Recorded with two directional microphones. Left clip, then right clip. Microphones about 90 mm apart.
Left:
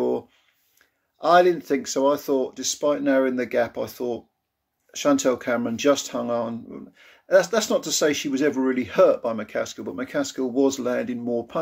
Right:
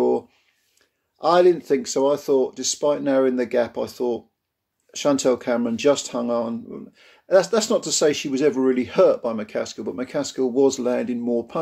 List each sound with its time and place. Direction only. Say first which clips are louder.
1.2 s speech: right 1 dB; 25° right (ahead or behind)